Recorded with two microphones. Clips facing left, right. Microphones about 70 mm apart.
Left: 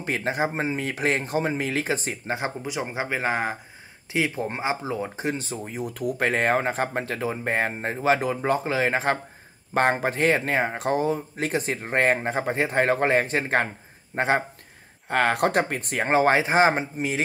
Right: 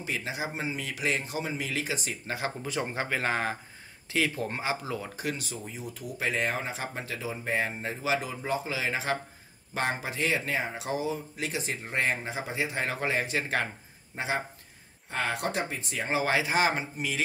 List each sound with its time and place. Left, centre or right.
0.0 s speech: left
2.3 s speech: left
5.7 s speech: left
14.1 s speech: left